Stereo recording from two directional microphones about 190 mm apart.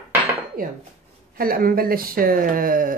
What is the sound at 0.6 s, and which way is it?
Speech, 45° right (ahead or behind).